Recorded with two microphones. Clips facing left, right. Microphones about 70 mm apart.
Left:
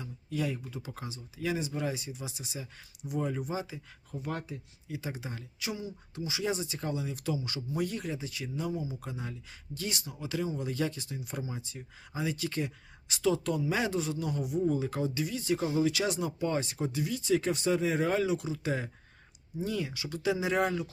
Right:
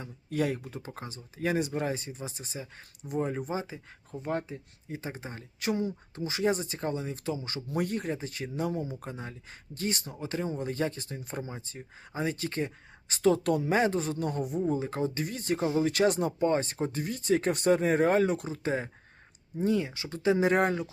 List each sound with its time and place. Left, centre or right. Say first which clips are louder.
0.0 s speech: right 4 dB; right
0.9 s speech: right 1 dB; right
7.7 s speech: right 3 dB; right
9.0 s speech: even; right
13.7 s speech: right 4 dB; right
14.7 s speech: right 1 dB; right